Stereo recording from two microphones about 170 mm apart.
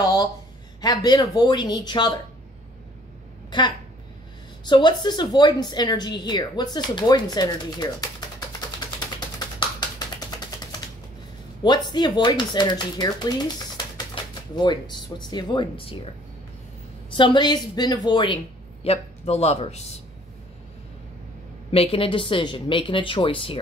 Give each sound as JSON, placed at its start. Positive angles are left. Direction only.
{"t": 0.7, "sound": "speech", "side_deg": 25}
{"t": 3.4, "sound": "speech", "side_deg": 25}
{"t": 9.6, "sound": "a sound", "side_deg": 25}
{"t": 11.6, "sound": "speech", "side_deg": 25}
{"t": 17.1, "sound": "speech", "side_deg": 25}
{"t": 18.9, "sound": "speech", "side_deg": 40}
{"t": 21.6, "sound": "speech", "side_deg": 35}